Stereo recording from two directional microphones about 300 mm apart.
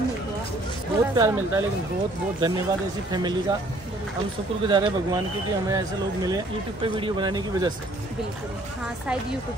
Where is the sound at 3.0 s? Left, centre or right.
Centre.